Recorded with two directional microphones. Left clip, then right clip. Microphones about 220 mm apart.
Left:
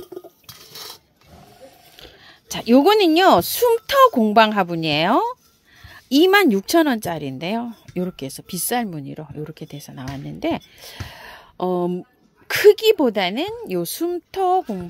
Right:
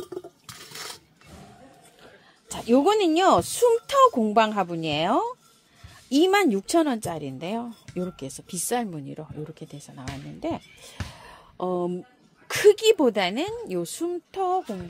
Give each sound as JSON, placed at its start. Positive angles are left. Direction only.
{"t": 2.0, "sound": "a woman's voice", "side_deg": 35}